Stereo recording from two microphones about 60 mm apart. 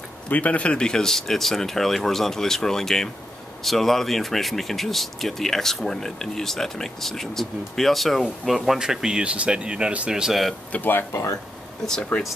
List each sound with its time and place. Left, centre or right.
0.3 s speech: left; by 8.7 s centre
8.7 s speech: centre
10.7 s speech: left